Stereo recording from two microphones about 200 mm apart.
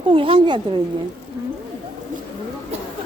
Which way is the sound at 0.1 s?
25° right (ahead or behind).